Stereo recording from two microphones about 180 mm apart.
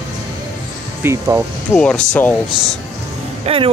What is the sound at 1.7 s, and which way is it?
Speech, 5° left (ahead or behind).